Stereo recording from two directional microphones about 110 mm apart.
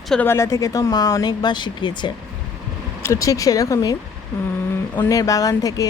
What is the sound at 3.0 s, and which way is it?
Speech, 30° left (ahead or behind).